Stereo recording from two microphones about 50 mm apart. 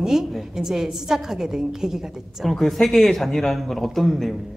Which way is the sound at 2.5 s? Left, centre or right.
Centre.